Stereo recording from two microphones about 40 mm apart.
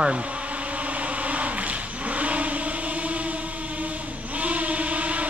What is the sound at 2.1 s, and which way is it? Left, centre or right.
Vehicle, right.